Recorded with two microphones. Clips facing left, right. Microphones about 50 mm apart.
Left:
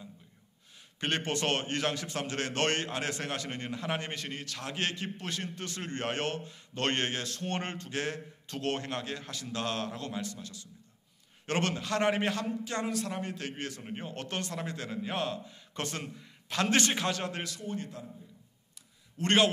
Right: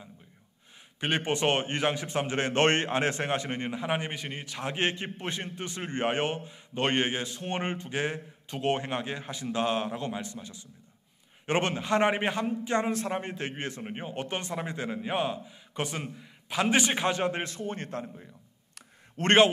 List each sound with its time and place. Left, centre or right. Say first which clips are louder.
0.9 s a man's voice: right 3 dB; centre; by 17.7 s right
17.7 s a man's voice: right 3 dB; right
19.2 s a man's voice: right 5 dB; right